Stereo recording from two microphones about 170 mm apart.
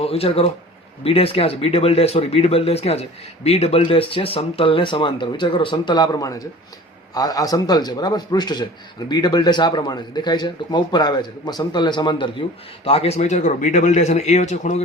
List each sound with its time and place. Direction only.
0.0 s speech: 35° left (ahead or behind)